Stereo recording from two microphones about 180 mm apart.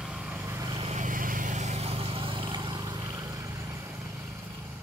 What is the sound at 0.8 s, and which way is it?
Vehicle, 40° right (ahead or behind).